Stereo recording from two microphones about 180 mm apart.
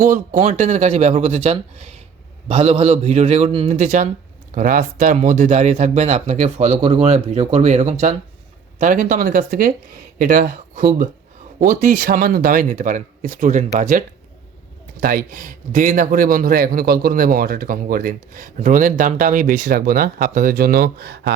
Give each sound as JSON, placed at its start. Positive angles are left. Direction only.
{"t": 0.0, "sound": "speech", "side_deg": -40}
{"t": 3.8, "sound": "a man's voice", "side_deg": -45}
{"t": 15.0, "sound": "a man's voice", "side_deg": -50}